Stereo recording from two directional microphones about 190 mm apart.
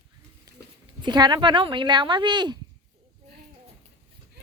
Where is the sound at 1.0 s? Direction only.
25° right (ahead or behind).